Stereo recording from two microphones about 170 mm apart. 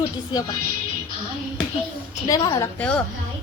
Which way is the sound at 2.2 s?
20° left (ahead or behind).